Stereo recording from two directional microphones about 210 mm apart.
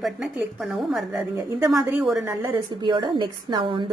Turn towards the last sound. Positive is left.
turn(degrees=-20)  # may be behind; listen again after turning